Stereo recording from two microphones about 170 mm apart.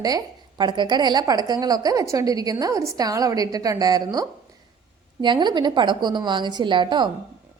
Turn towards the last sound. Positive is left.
turn(degrees=-25)  # may be behind; listen again after turning